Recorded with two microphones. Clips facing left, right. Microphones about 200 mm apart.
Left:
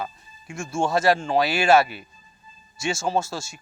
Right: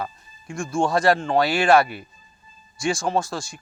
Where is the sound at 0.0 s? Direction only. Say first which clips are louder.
Right 1 dB; 25° left (ahead or behind).